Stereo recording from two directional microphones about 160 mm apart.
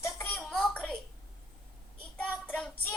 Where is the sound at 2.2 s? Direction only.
5° left (ahead or behind).